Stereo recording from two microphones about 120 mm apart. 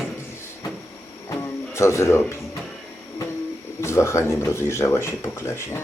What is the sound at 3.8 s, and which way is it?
Speech, 25° left (ahead or behind).